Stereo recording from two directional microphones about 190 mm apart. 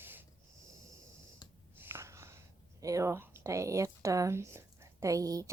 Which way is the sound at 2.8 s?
15° right (ahead or behind).